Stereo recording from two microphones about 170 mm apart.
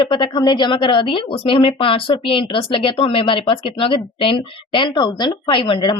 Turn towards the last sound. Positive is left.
turn(degrees=30)  # may be behind; listen again after turning